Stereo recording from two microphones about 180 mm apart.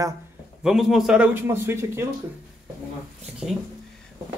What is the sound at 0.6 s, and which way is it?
Speech, centre (ahead or behind).